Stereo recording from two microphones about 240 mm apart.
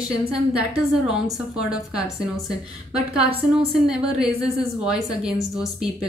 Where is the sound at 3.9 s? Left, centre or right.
Centre.